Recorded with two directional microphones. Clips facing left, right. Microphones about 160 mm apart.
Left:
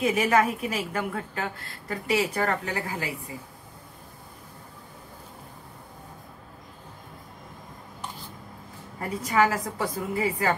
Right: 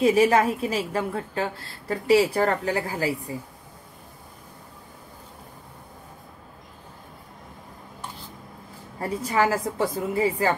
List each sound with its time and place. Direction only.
0.0 s a woman's voice: 30° right (ahead or behind)
9.2 s a woman's voice: 30° right (ahead or behind)